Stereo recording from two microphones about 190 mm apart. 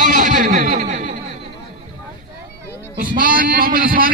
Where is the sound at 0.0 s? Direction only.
40° right (ahead or behind).